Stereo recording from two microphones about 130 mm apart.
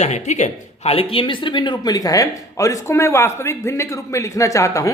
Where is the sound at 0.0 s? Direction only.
60° left (ahead or behind).